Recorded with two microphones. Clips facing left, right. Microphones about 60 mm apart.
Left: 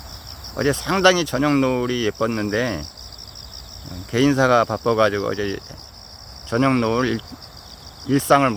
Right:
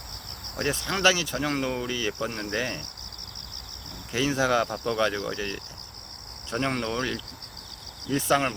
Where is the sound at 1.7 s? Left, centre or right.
Left.